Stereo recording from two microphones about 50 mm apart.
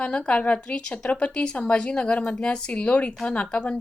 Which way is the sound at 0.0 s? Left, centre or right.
Left.